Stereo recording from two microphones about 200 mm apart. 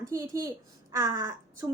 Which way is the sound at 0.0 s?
15° right (ahead or behind).